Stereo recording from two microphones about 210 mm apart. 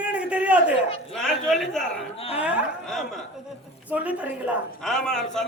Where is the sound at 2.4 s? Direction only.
Centre (ahead or behind).